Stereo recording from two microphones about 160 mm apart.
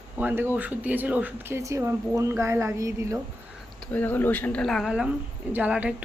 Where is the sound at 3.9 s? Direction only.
10° left (ahead or behind); by 6.0 s 5° right (ahead or behind).